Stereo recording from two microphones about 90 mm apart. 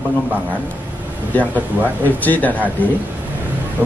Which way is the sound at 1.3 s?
20° left (ahead or behind).